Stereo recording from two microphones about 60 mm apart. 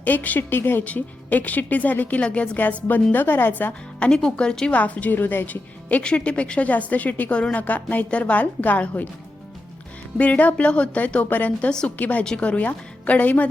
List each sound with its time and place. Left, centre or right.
0.0 s a woman's voice: left
2.8 s a woman's voice: left
4.1 s speech: centre
4.8 s a woman's voice: left
6.0 s a woman's voice: centre
10.2 s a woman's voice: left